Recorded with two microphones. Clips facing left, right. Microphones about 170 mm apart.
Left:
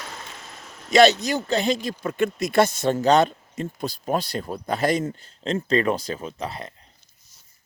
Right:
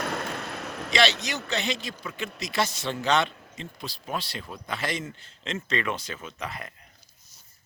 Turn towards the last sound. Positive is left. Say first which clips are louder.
# left 5 dB
turn(degrees=30)  # may be behind; listen again after turning